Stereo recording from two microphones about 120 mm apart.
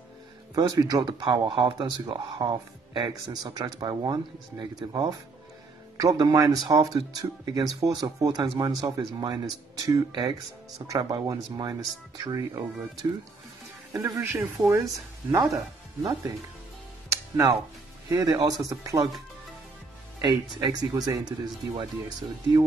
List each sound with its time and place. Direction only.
0.6 s speech: 30° right (ahead or behind)
13.9 s speech: 25° right (ahead or behind)
17.1 s music: 25° right (ahead or behind)
18.0 s speech: 30° right (ahead or behind)
20.2 s speech: 40° right (ahead or behind)